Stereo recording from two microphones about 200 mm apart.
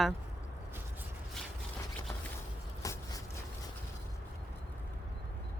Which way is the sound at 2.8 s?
15° left (ahead or behind).